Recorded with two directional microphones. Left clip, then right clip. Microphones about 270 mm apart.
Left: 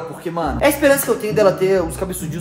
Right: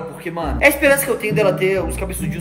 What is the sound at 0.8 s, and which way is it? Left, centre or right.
Speech, centre.